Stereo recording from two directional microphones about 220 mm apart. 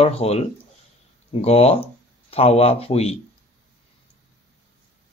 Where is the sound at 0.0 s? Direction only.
30° left (ahead or behind).